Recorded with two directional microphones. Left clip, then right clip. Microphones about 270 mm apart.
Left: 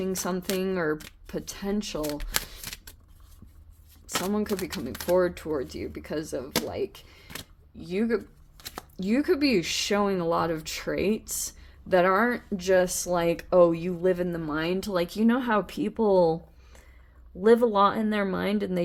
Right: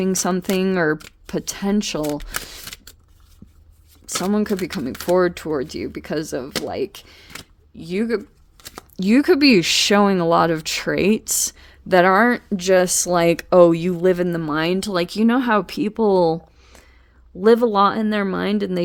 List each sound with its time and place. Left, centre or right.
0.0 s speech: right
4.2 s speech: right
8.5 s a sound: centre
9.0 s speech: right